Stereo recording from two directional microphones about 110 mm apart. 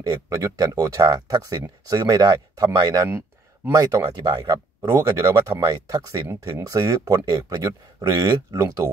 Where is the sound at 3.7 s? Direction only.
30° right (ahead or behind).